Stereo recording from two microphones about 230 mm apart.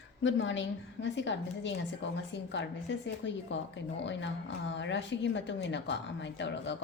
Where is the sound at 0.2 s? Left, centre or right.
Left.